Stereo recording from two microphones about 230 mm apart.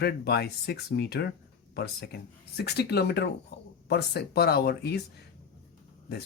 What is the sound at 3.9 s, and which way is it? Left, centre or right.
Speech, left.